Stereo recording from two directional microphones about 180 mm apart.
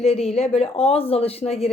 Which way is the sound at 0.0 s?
35° left (ahead or behind).